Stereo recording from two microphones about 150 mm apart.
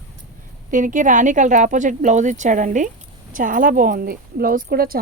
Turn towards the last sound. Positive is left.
turn(degrees=-80)